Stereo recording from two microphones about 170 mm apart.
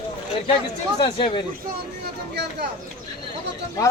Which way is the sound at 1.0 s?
35° left (ahead or behind).